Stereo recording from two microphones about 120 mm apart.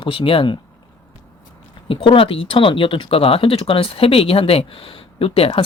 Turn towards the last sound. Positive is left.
turn(degrees=50)  # may be behind; listen again after turning